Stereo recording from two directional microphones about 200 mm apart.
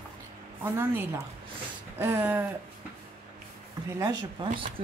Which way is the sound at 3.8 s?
15° right (ahead or behind).